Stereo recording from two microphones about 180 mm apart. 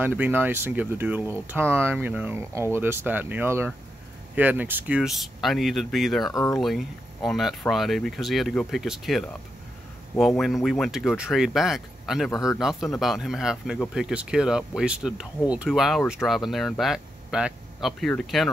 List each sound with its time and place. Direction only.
0.0 s speech: 10° right (ahead or behind)
6.3 s speech: 20° left (ahead or behind)
6.6 s speech: centre (ahead or behind)
12.3 s speech: 20° left (ahead or behind)
12.5 s speech: centre (ahead or behind)